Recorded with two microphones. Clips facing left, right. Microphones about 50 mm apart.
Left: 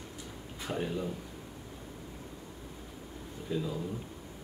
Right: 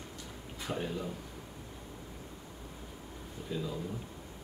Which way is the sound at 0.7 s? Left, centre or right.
Centre.